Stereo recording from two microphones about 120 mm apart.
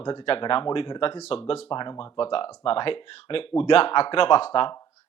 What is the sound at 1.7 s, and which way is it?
Speech, 40° left (ahead or behind).